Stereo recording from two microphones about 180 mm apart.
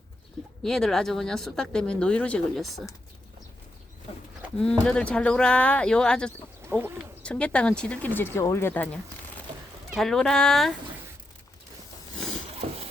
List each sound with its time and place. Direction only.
0.6 s speech: 5° left (ahead or behind)
4.5 s speech: 5° left (ahead or behind)
6.6 s bird: 10° right (ahead or behind)
7.2 s speech: 5° left (ahead or behind)
12.6 s a sound: 45° right (ahead or behind)